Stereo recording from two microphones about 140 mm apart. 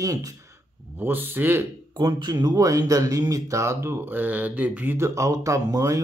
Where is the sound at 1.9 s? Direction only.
30° right (ahead or behind).